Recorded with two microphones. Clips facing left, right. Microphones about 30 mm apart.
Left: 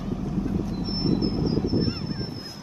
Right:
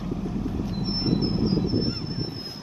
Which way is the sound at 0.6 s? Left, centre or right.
Right.